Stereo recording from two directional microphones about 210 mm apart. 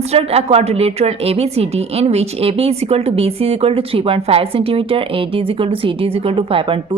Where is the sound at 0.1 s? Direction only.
30° right (ahead or behind).